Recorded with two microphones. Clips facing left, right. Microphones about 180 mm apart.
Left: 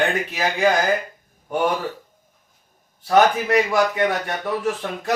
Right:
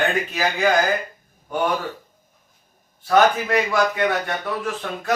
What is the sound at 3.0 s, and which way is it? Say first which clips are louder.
A man's voice: left 1 dB; 20° left (ahead or behind).